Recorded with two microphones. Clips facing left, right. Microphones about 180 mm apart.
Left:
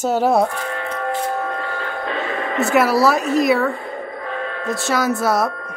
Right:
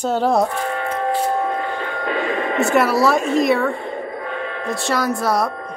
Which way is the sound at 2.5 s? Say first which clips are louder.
Left 1 dB; centre (ahead or behind).